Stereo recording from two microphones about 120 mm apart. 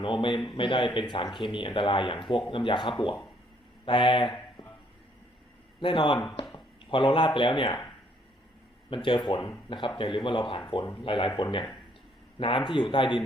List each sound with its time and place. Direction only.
0.0 s speech: 45° left (ahead or behind)
5.8 s speech: 45° left (ahead or behind)
8.9 s speech: 45° left (ahead or behind)